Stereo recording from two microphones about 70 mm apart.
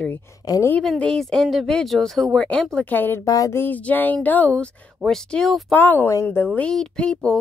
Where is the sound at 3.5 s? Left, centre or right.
Left.